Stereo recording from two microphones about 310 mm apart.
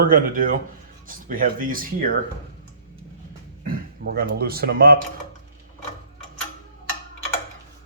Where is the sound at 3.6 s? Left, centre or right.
Right.